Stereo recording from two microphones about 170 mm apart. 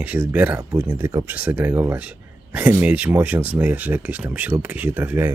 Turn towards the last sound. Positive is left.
turn(degrees=-10)  # may be behind; listen again after turning